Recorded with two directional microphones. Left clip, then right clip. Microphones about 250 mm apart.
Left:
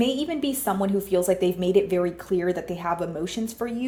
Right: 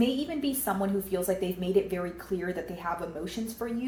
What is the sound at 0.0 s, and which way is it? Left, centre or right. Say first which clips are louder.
Speech: left 4 dB; left.